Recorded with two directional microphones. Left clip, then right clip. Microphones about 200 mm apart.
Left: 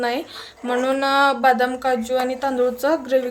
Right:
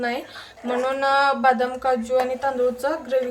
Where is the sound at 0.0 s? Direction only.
40° left (ahead or behind).